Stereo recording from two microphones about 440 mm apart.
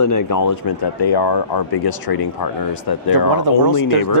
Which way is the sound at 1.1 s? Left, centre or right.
Left.